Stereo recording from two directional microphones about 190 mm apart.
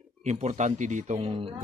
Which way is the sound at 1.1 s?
30° right (ahead or behind).